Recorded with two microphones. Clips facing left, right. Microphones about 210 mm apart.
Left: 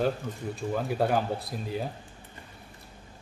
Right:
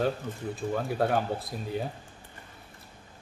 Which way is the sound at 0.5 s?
Centre (ahead or behind).